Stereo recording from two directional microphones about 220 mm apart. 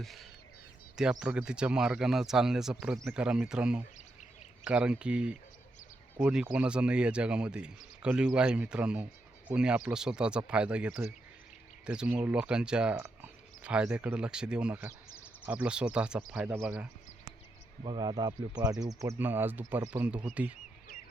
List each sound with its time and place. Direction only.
0.0 s speech: centre (ahead or behind)
17.8 s speech: 20° right (ahead or behind)